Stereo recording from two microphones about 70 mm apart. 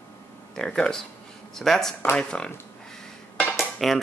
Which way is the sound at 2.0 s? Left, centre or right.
Left.